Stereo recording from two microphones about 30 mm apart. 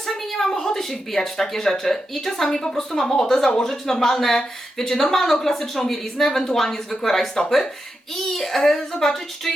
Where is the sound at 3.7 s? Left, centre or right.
Centre.